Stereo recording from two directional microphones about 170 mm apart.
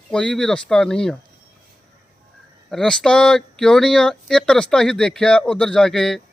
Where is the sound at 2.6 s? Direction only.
5° left (ahead or behind).